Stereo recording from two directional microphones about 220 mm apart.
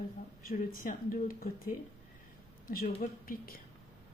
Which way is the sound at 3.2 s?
40° left (ahead or behind).